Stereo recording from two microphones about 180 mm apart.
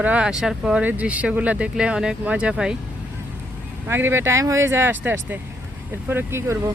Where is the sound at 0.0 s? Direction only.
5° right (ahead or behind).